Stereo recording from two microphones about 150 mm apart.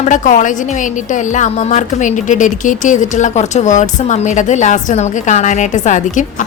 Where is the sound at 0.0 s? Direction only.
55° left (ahead or behind).